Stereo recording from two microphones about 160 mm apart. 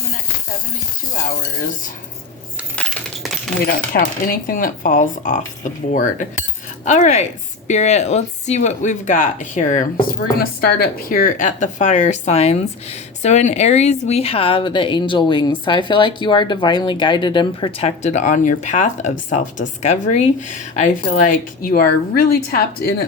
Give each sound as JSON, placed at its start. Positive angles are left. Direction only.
{"t": 2.7, "sound": "coin", "side_deg": 5}
{"t": 3.9, "sound": "a woman's voice", "side_deg": 60}
{"t": 10.3, "sound": "a woman's voice", "side_deg": 70}